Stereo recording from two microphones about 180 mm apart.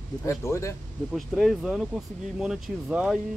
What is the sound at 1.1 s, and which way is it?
Speech, centre (ahead or behind).